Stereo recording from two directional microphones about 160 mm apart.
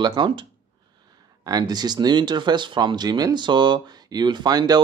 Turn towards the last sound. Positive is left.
turn(degrees=-25)  # may be behind; listen again after turning